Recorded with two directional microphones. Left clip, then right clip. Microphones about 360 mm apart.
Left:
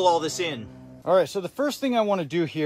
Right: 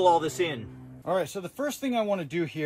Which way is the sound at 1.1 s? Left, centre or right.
Left.